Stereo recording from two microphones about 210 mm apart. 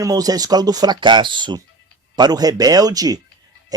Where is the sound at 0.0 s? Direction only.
15° right (ahead or behind).